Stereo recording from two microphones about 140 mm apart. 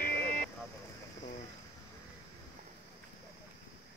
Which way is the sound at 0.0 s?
90° left.